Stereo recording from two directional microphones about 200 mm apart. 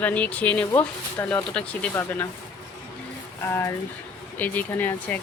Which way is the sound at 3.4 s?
10° left (ahead or behind).